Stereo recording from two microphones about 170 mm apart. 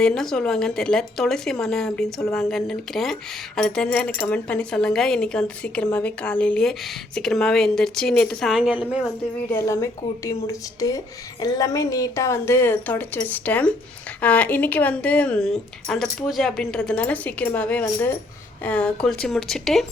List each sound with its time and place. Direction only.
0.0 s speech: 5° left (ahead or behind)
9.5 s speech: 15° left (ahead or behind)